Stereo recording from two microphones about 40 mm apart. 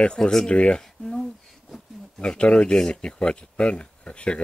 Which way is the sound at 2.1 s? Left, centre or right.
Left.